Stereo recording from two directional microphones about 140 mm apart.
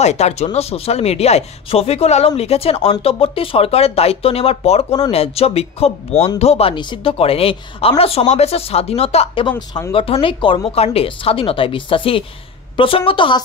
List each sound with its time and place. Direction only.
0.0 s speech: 55° left (ahead or behind); by 13.4 s 35° left (ahead or behind)